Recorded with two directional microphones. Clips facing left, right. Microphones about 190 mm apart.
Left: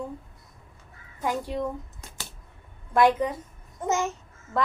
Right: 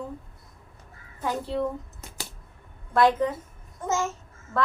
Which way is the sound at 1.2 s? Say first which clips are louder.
Even; 15° left (ahead or behind).